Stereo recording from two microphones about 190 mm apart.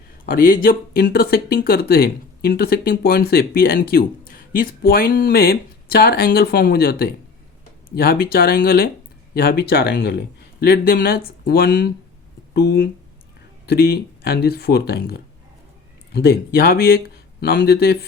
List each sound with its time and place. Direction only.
0.3 s speech: 45° left (ahead or behind)